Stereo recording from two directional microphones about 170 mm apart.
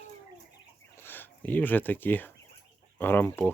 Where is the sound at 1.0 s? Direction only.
10° left (ahead or behind).